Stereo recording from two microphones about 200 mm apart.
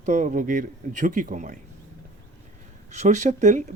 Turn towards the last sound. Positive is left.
turn(degrees=-35)  # may be behind; listen again after turning